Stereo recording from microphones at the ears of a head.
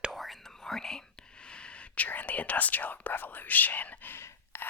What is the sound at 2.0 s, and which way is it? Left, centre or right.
Speech, left.